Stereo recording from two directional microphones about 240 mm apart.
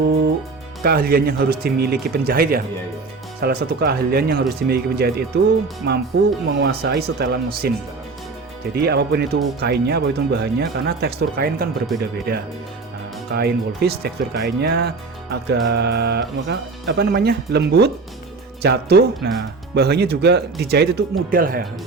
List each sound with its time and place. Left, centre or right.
0.8 s speech: right
8.7 s speech: right
11.9 s speech: centre
13.3 s speech: right